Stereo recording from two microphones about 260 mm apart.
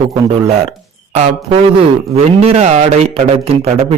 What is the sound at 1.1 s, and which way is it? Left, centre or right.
A man's voice, right.